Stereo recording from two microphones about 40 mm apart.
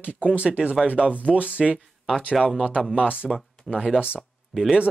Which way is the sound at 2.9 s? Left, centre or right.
Right.